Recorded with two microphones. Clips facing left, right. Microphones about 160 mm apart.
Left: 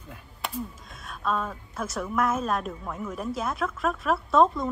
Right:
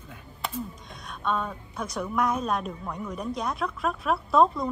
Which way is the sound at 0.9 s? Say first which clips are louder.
Even; centre (ahead or behind).